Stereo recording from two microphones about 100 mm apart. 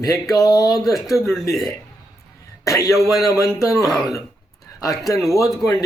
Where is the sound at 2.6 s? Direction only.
30° left (ahead or behind).